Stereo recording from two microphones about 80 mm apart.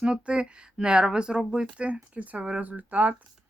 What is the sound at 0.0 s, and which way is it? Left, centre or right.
Speech, centre.